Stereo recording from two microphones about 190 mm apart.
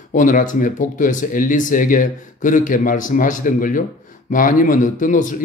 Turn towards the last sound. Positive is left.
turn(degrees=40)  # may be behind; listen again after turning